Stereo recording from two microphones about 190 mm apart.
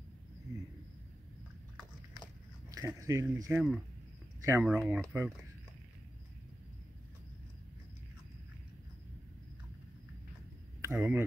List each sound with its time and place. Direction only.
2.7 s speech: 15° right (ahead or behind)
3.5 s speech: 5° right (ahead or behind)
10.8 s speech: 10° right (ahead or behind)